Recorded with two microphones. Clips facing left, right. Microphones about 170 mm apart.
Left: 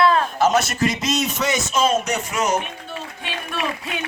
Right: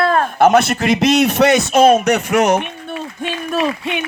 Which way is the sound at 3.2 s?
40° right (ahead or behind).